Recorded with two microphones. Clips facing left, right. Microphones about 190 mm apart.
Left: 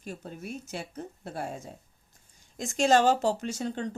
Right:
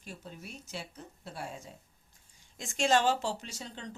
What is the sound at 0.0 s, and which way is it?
Speech, 45° left (ahead or behind).